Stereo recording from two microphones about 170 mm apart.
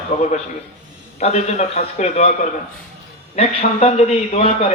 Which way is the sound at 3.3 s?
35° left (ahead or behind).